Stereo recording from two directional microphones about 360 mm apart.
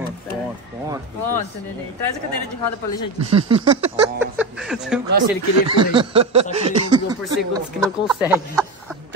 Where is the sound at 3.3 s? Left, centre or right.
Centre.